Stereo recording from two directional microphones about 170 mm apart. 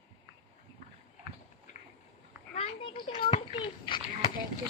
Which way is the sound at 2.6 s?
30° left (ahead or behind).